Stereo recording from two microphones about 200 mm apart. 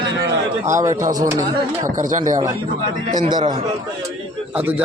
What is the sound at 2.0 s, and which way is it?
Speech, 40° right (ahead or behind).